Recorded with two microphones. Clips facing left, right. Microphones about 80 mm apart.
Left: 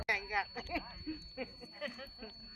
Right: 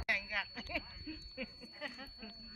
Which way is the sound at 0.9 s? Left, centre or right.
Centre.